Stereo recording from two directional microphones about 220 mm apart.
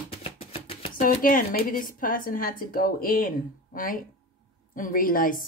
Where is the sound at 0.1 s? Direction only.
25° left (ahead or behind).